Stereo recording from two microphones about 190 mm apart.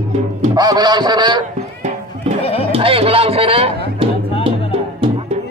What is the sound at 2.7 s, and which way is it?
Speech, 30° right (ahead or behind).